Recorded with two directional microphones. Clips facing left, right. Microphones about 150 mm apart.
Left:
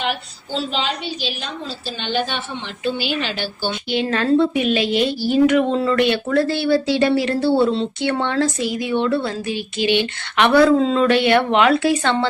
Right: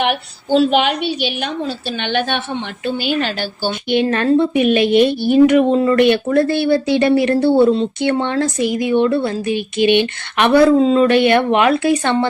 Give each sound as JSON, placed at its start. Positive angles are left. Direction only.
{"t": 0.0, "sound": "a woman's voice", "side_deg": -60}
{"t": 2.8, "sound": "a woman's voice", "side_deg": -50}
{"t": 4.1, "sound": "a woman's voice", "side_deg": -20}
{"t": 4.6, "sound": "a woman's voice", "side_deg": -55}
{"t": 5.5, "sound": "speech", "side_deg": -15}
{"t": 5.8, "sound": "a woman's voice", "side_deg": -50}
{"t": 7.3, "sound": "a woman's voice", "side_deg": -20}
{"t": 11.1, "sound": "a woman's voice", "side_deg": -50}
{"t": 11.3, "sound": "speech", "side_deg": -15}